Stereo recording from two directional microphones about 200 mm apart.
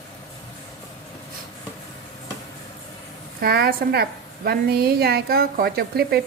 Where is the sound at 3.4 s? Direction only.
50° right (ahead or behind).